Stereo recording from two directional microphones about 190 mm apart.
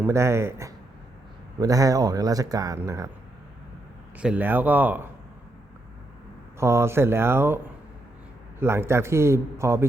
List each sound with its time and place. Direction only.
0.0 s speech: 15° right (ahead or behind)
4.2 s speech: 5° right (ahead or behind)
6.6 s speech: 15° right (ahead or behind)